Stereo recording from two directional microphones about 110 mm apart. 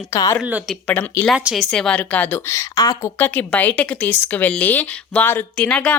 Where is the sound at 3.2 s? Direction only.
15° left (ahead or behind).